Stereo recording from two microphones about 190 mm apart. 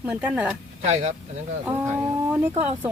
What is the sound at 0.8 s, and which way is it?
Speech, 35° right (ahead or behind).